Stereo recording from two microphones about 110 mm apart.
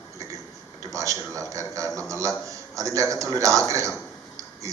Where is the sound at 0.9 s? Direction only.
30° right (ahead or behind).